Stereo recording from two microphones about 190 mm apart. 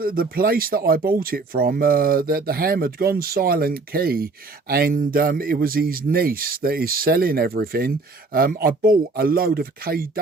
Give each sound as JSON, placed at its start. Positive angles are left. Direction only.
{"t": 0.0, "sound": "speech", "side_deg": -50}